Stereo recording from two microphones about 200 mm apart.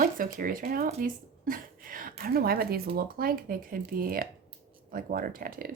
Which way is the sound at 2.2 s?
50° right (ahead or behind).